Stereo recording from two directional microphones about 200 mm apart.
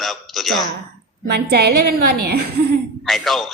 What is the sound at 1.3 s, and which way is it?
A woman's voice, 50° right (ahead or behind).